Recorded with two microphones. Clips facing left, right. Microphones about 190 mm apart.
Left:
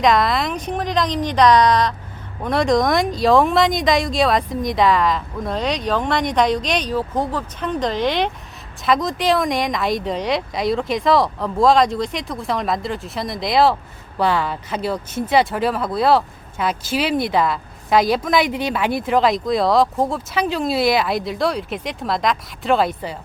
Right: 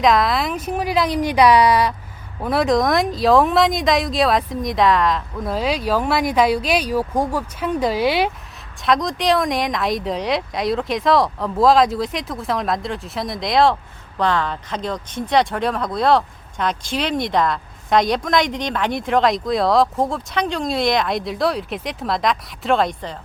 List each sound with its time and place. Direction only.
0.0 s speech: centre (ahead or behind)